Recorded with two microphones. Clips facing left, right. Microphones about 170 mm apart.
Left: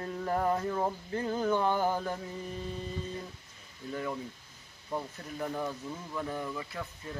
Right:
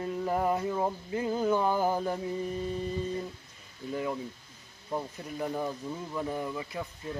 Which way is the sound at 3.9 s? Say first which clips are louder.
Right 3 dB; 15° right (ahead or behind).